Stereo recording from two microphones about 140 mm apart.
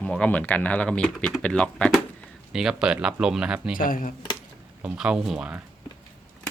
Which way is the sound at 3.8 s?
80° left.